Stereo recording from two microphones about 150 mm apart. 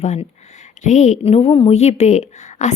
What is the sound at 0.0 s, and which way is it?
A woman's voice, 50° left (ahead or behind).